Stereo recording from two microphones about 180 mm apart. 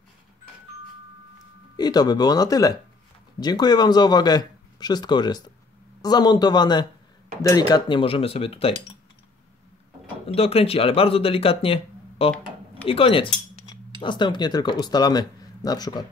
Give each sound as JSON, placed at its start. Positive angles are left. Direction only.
{"t": 1.8, "sound": "speech", "side_deg": 20}
{"t": 10.2, "sound": "speech", "side_deg": 35}